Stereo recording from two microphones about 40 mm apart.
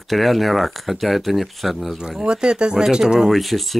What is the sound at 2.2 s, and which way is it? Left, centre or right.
Speech, right.